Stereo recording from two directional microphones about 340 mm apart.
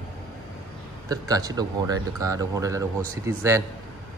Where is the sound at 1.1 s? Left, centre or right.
Centre.